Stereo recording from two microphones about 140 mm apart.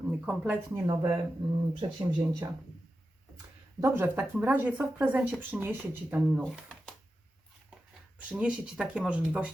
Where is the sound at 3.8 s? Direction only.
20° right (ahead or behind); by 6.7 s 5° right (ahead or behind).